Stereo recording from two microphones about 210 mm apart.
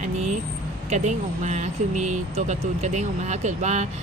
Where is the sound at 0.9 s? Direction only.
35° right (ahead or behind).